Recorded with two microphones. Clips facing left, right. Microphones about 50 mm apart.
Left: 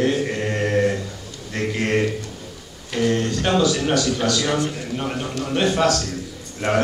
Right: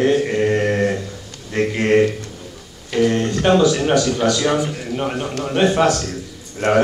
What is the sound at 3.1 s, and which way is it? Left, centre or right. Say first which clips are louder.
Speech: right 3 dB; right.